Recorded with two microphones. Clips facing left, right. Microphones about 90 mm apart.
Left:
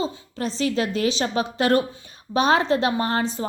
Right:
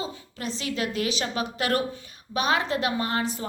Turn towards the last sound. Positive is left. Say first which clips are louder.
# left 4 dB
turn(degrees=30)  # may be behind; listen again after turning